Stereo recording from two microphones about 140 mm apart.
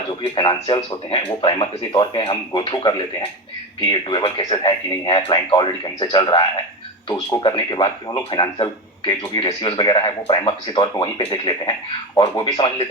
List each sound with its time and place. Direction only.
0.2 s a man's voice: 35° left (ahead or behind)
7.4 s a man's voice: 35° left (ahead or behind)